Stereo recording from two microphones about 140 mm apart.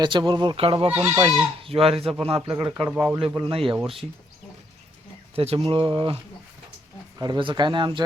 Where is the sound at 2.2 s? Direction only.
40° right (ahead or behind).